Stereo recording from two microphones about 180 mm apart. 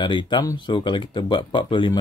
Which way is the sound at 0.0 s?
25° left (ahead or behind).